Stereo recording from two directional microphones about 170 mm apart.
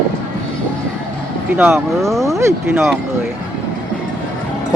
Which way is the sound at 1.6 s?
10° right (ahead or behind).